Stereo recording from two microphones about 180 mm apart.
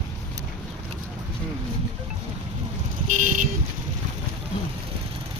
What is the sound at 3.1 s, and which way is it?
Vehicle, 45° right (ahead or behind).